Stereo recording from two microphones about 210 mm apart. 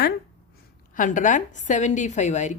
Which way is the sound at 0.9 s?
40° left (ahead or behind).